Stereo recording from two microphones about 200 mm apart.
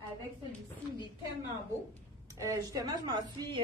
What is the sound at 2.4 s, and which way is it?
Speech, 15° right (ahead or behind).